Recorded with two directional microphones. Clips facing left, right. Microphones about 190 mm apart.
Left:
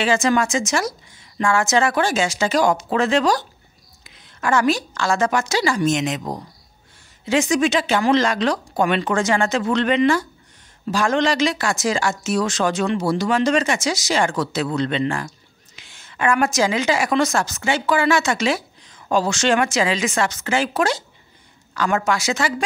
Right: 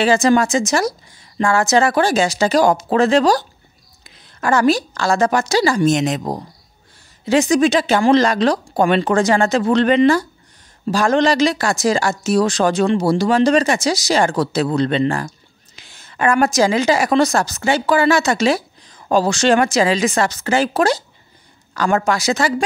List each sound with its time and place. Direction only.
0.0 s a woman's voice: 35° right (ahead or behind)